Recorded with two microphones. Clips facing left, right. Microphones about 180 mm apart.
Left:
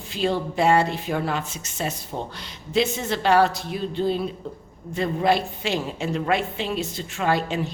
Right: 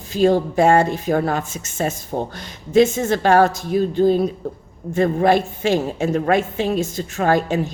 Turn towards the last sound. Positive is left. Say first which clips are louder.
# right 5 dB
turn(degrees=-45)  # may be behind; listen again after turning